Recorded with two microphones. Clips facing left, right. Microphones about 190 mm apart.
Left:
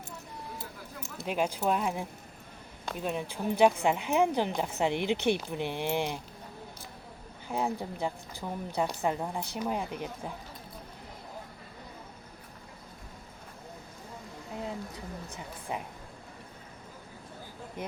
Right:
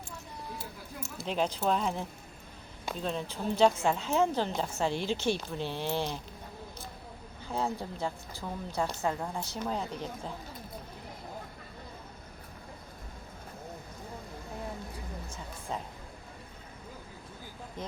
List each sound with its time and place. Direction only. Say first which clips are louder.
1.2 s a woman's voice: left 1 dB; 10° left (ahead or behind)
7.4 s a woman's voice: left 1 dB; 15° left (ahead or behind)
15.7 s a woman's voice: left 1 dB; 15° left (ahead or behind)
17.8 s a woman's voice: left 2 dB; 10° left (ahead or behind)